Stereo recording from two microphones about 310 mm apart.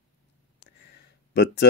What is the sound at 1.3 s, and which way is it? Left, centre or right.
Speech, left.